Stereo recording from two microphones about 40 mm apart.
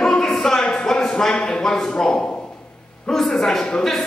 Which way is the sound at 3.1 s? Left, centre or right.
Centre.